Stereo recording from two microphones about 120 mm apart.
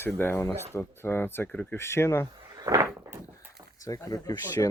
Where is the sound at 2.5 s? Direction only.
35° right (ahead or behind).